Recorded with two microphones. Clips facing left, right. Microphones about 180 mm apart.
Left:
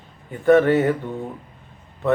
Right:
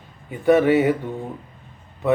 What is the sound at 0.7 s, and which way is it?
Speech, 15° right (ahead or behind).